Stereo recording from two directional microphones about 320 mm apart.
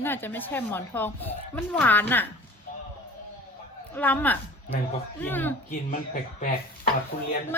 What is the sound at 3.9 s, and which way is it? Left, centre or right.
A woman's voice, centre.